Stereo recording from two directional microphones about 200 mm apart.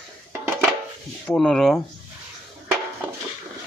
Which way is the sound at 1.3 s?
5° left (ahead or behind).